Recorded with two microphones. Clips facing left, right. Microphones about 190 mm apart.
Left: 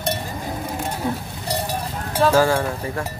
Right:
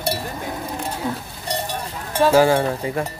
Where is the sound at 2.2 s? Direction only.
15° right (ahead or behind).